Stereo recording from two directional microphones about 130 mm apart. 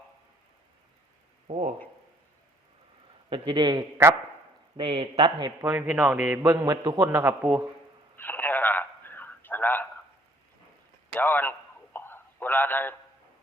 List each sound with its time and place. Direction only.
1.5 s speech: 55° right (ahead or behind)
3.2 s a man's voice: 40° right (ahead or behind)
5.6 s speech: 15° right (ahead or behind)
6.4 s a man's voice: 25° right (ahead or behind)
8.1 s telephone: 15° left (ahead or behind)
11.1 s a sound: 15° left (ahead or behind)